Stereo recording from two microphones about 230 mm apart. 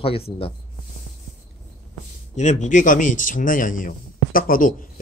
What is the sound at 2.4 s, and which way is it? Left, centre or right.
Speech, left.